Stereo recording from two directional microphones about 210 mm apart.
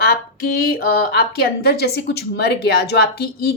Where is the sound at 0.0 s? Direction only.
50° left (ahead or behind).